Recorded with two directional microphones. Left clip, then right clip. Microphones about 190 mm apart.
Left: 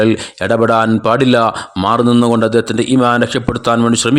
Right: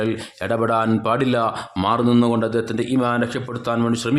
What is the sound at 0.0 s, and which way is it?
A man's voice, 30° left (ahead or behind).